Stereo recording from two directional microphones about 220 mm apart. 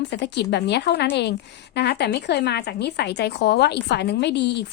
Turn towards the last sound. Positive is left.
turn(degrees=50)  # may be behind; listen again after turning